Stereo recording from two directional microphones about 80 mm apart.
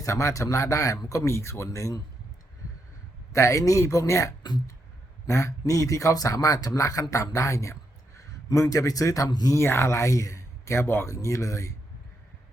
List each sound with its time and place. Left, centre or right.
0.0 s speech: left
3.3 s a man's voice: left
8.2 s a sound: left
8.7 s a man's voice: left
9.6 s speech: left